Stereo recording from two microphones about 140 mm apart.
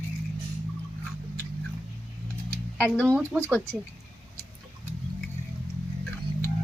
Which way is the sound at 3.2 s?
15° right (ahead or behind).